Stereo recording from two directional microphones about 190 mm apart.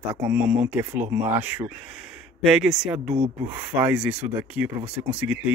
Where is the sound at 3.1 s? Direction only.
25° right (ahead or behind).